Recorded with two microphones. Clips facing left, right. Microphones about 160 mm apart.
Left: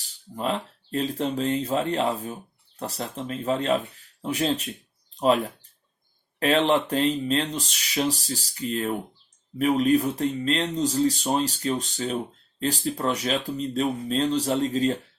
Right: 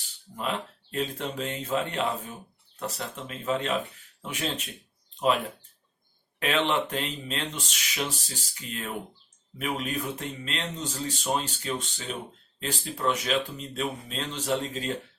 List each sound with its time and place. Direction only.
0.0 s speech: 35° left (ahead or behind)
6.4 s speech: 35° left (ahead or behind)